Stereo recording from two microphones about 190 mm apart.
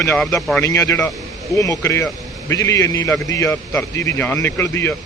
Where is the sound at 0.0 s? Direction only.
15° left (ahead or behind).